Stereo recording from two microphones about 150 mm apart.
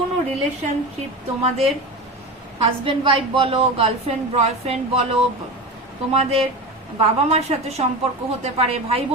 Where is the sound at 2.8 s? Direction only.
35° right (ahead or behind).